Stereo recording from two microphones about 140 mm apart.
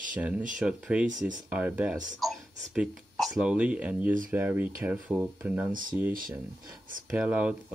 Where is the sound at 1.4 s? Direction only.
10° right (ahead or behind).